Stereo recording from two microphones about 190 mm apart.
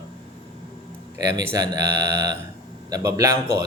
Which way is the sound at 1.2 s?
20° right (ahead or behind).